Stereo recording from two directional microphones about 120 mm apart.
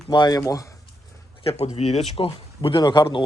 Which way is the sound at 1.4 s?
60° left (ahead or behind).